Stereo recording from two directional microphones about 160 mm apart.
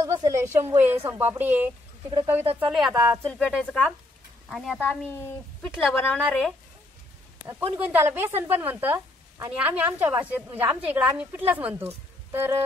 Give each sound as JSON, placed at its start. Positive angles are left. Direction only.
{"t": 0.0, "sound": "a woman's voice", "side_deg": -20}
{"t": 2.6, "sound": "speech", "side_deg": 0}
{"t": 2.9, "sound": "a woman's voice", "side_deg": -15}
{"t": 3.3, "sound": "a woman's voice", "side_deg": 5}
{"t": 7.4, "sound": "a woman's voice", "side_deg": -10}
{"t": 12.3, "sound": "music", "side_deg": -15}